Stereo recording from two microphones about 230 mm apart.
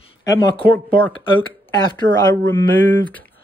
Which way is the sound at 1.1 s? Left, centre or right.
Left.